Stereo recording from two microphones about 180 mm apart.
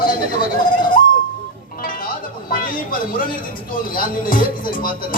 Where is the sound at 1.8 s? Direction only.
50° left (ahead or behind).